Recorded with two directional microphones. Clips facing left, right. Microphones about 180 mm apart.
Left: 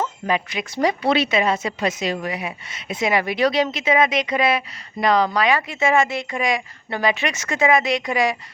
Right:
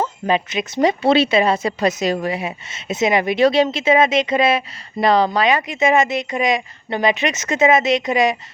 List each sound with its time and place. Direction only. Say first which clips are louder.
0.0 s a woman's voice: right 3 dB; 25° right (ahead or behind)
2.3 s speech: right 4 dB; 25° right (ahead or behind)